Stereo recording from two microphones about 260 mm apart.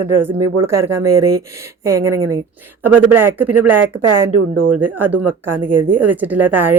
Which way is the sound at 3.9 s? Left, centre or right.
Right.